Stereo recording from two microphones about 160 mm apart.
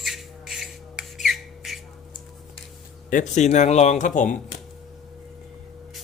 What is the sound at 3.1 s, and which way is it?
Speech, 50° left (ahead or behind).